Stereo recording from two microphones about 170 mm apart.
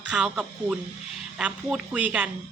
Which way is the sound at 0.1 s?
5° right (ahead or behind).